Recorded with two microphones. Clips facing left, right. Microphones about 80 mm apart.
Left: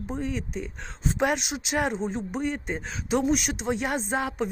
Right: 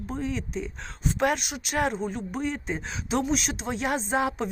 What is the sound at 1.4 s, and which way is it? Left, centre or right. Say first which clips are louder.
Speech: even; centre.